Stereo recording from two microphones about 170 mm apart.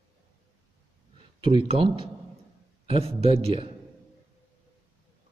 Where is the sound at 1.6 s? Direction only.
30° right (ahead or behind).